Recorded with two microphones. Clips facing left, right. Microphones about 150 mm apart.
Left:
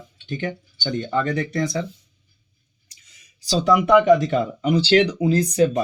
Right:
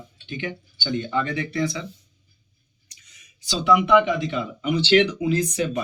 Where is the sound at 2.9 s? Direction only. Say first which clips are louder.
Right 1 dB; 30° left (ahead or behind).